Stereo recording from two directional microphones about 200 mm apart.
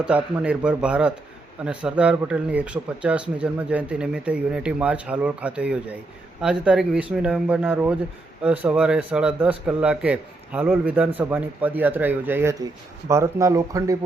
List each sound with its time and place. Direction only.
0.0 s speech: 5° right (ahead or behind)